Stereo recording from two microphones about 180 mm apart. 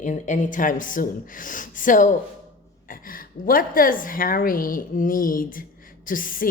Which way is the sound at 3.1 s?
50° left (ahead or behind).